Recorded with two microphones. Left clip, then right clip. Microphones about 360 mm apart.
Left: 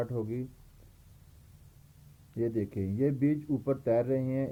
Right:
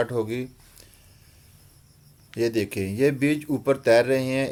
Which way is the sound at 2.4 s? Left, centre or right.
Centre.